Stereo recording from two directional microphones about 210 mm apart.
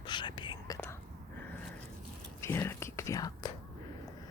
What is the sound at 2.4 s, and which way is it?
Speech, 10° left (ahead or behind).